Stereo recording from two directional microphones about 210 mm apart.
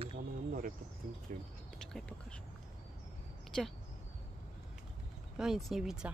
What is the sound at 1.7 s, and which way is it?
Speech, 5° left (ahead or behind).